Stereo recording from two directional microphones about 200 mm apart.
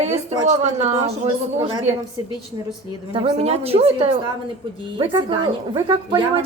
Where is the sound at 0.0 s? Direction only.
35° right (ahead or behind).